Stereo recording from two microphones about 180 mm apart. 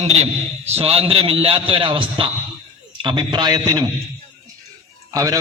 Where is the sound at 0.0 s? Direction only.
35° right (ahead or behind); by 3.8 s 20° right (ahead or behind).